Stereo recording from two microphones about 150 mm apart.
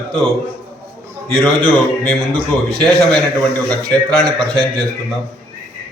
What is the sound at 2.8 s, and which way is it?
A man's voice, 5° left (ahead or behind).